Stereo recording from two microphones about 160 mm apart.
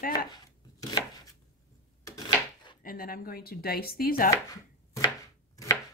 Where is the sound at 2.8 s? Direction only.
65° left (ahead or behind).